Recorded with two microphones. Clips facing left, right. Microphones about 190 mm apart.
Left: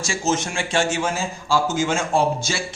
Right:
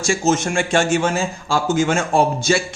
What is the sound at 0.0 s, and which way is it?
A man's voice, 50° right (ahead or behind).